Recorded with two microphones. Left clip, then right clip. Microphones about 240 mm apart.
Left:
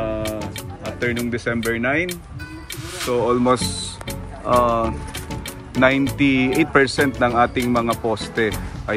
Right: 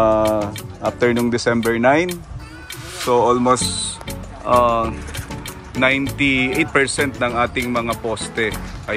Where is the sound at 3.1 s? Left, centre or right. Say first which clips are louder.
Right 3 dB; centre.